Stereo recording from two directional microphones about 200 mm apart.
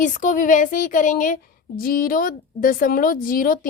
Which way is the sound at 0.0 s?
40° left (ahead or behind).